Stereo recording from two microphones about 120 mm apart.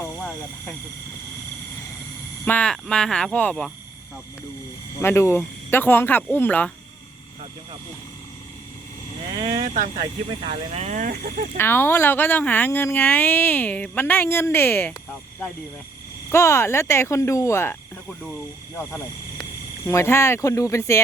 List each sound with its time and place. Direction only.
2.4 s speech: 10° left (ahead or behind)
4.9 s speech: 20° left (ahead or behind)
9.5 s speech: 90° right
10.4 s speech: 55° right (ahead or behind); by 11.1 s 80° right
11.5 s speech: 20° left (ahead or behind)
16.3 s speech: 25° left (ahead or behind)
18.8 s speech: 20° left (ahead or behind)